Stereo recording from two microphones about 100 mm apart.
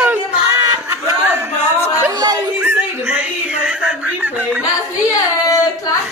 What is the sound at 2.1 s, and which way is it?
Laughter, 45° right (ahead or behind).